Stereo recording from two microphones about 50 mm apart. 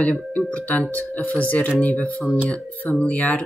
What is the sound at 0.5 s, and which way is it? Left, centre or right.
Speech, left.